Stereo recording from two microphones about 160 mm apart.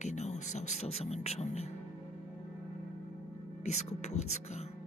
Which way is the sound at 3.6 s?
45° left (ahead or behind).